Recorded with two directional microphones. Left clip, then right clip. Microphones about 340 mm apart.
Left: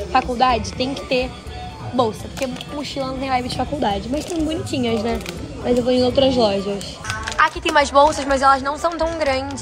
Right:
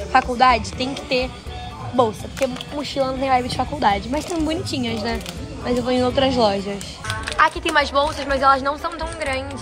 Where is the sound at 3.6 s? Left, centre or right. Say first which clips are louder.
Right 2 dB; right.